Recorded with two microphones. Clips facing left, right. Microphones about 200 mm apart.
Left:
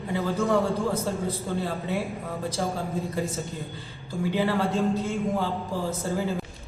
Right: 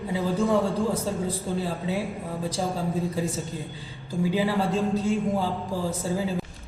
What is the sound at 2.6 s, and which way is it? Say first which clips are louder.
Speech: even; 20° right (ahead or behind).